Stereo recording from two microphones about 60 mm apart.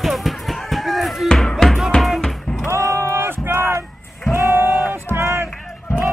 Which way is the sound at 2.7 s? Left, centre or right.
Right.